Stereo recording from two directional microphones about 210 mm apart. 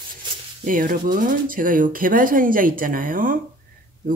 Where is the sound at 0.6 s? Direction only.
40° right (ahead or behind).